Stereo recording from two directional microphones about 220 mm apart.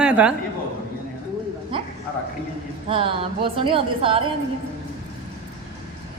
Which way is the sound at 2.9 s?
25° right (ahead or behind).